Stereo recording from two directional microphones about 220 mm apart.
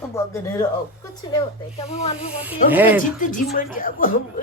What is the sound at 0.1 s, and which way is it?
Speech, 15° left (ahead or behind).